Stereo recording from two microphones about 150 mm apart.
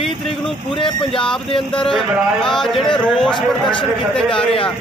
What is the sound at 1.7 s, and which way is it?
Speech, 5° left (ahead or behind).